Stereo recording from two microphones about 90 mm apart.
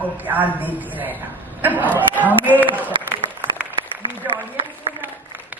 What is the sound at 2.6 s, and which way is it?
Speech, 20° right (ahead or behind).